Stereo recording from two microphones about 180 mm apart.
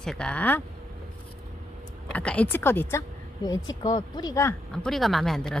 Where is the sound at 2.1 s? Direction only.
5° left (ahead or behind).